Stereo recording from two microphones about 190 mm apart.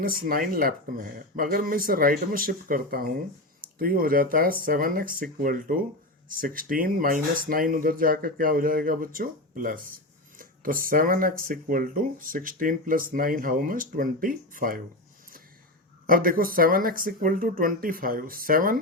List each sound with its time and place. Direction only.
0.0 s speech: 50° right (ahead or behind)
16.0 s speech: 50° right (ahead or behind)